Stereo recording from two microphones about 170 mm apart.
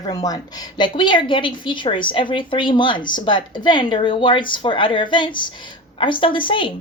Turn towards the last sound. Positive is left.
turn(degrees=30)  # may be behind; listen again after turning